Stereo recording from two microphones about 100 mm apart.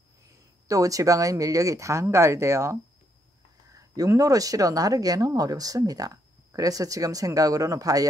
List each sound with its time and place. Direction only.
0.7 s speech: 35° right (ahead or behind)
3.9 s speech: 35° right (ahead or behind)